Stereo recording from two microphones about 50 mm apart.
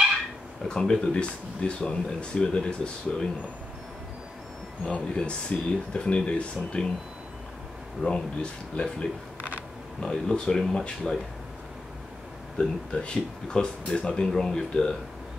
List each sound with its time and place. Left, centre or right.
0.7 s speech: centre
4.9 s speech: left
8.0 s speech: left
9.4 s a sound: right
9.9 s speech: centre
12.5 s speech: centre